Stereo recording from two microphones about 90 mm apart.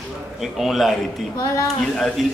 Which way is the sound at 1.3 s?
40° left (ahead or behind).